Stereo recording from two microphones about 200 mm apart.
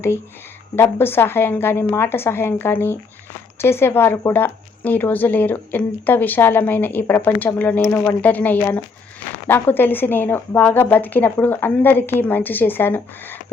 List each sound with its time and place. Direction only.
0.8 s speech: 10° left (ahead or behind)